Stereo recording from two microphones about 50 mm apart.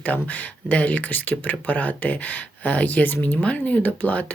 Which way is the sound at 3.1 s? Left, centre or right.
Left.